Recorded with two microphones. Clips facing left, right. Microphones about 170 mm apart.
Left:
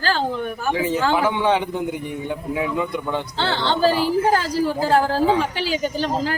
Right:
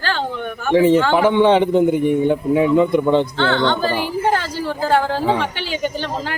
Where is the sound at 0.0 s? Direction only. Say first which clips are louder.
Left 1 dB; 35° left (ahead or behind).